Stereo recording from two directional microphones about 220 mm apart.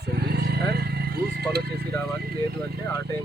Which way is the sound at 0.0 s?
45° right (ahead or behind).